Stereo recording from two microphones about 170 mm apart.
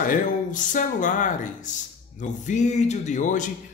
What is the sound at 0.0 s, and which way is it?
Speech, 50° left (ahead or behind).